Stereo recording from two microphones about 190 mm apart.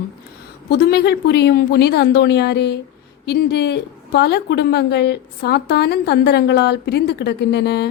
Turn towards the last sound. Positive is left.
turn(degrees=60)  # may be behind; listen again after turning